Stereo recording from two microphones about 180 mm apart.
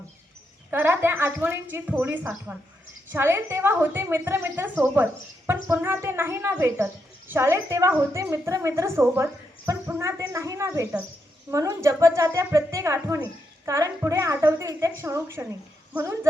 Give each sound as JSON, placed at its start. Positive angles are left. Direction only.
{"t": 0.7, "sound": "a child's voice", "side_deg": -10}